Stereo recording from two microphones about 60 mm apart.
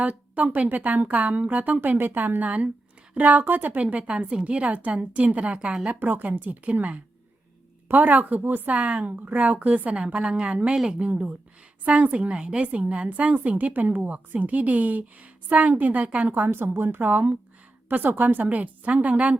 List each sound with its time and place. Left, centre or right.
0.0 s a woman's voice: right
6.0 s a woman's voice: right
9.9 s a woman's voice: centre
16.3 s a woman's voice: right